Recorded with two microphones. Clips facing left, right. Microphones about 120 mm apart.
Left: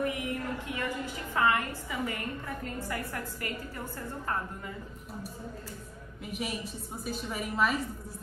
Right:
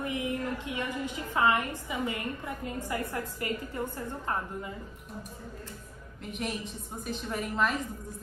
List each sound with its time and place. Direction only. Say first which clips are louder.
0.0 s a woman's voice: even; 20° right (ahead or behind)
6.2 s a woman's voice: right 1 dB; 5° left (ahead or behind)